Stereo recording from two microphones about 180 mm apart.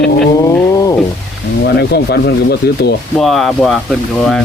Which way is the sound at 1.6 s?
65° left (ahead or behind).